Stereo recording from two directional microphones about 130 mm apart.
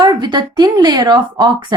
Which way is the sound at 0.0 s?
35° right (ahead or behind).